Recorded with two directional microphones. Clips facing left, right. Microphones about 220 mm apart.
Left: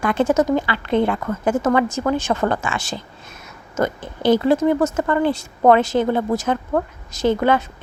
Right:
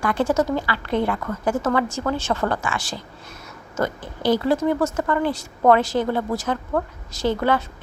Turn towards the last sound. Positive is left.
turn(degrees=20)  # may be behind; listen again after turning